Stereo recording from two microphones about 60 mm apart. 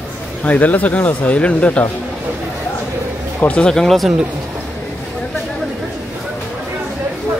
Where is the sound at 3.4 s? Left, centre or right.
Left.